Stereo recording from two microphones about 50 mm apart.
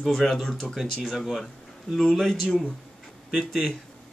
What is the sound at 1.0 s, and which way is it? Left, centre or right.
Speech, centre.